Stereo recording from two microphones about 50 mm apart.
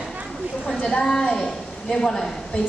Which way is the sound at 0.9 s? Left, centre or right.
Centre.